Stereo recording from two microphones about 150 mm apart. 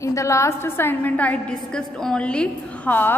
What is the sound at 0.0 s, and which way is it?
A woman's voice, 20° left (ahead or behind).